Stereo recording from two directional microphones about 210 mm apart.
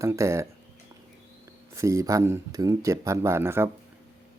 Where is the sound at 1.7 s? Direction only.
15° right (ahead or behind).